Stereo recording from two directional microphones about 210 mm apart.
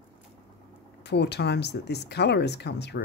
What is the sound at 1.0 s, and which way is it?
Speech, 55° left (ahead or behind).